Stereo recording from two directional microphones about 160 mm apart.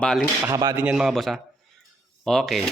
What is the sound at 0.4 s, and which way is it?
Speech, 20° right (ahead or behind).